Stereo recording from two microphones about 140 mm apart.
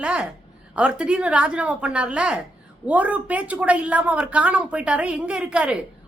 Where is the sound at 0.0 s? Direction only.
10° right (ahead or behind).